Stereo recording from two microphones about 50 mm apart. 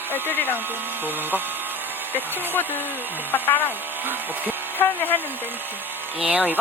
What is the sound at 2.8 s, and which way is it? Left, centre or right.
Speech, right.